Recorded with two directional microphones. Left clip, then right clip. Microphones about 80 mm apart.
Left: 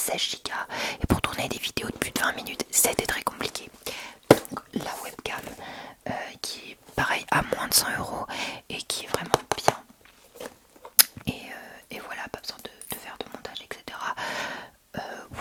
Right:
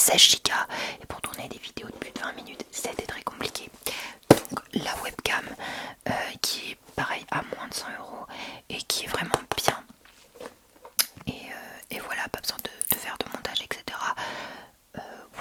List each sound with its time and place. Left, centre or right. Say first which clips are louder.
0.0 s speech: right 10 dB; right
1.0 s speech: left 9 dB; left
3.3 s speech: left 1 dB; centre
4.4 s whispering: right 2 dB; right
6.9 s whispering: left 5 dB; centre
8.6 s whispering: right 2 dB; centre
9.0 s whispering: right 1 dB; centre
9.3 s whispering: left 5 dB; left
10.4 s a sound: left 2 dB; left
10.8 s whispering: left 2 dB; left
11.3 s whispering: right 1 dB; centre
13.9 s whispering: right 1 dB; centre
14.3 s a sound: left 6 dB; left